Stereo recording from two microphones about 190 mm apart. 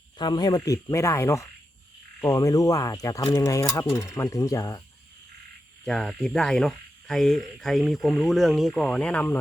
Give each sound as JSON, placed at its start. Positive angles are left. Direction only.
{"t": 0.2, "sound": "speech", "side_deg": 20}
{"t": 5.8, "sound": "speech", "side_deg": 5}